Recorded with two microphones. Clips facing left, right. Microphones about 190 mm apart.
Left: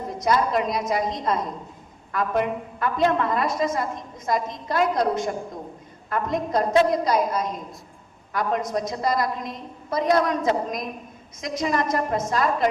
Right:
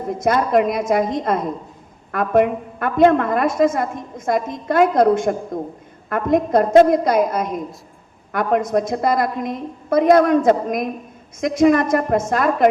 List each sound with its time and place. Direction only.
0.1 s a woman's voice: 55° right (ahead or behind)